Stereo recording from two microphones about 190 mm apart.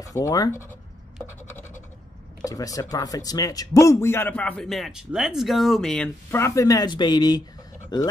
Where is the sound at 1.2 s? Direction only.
15° left (ahead or behind).